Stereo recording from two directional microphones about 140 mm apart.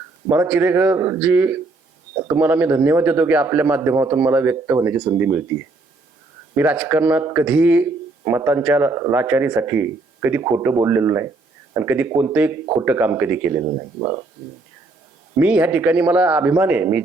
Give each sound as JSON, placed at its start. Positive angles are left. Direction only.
{"t": 0.3, "sound": "speech", "side_deg": -10}
{"t": 15.4, "sound": "speech", "side_deg": -10}